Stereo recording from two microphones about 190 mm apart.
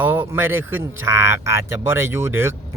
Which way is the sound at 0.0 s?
10° right (ahead or behind).